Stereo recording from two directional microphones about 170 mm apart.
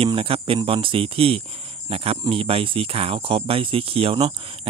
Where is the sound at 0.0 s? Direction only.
35° right (ahead or behind).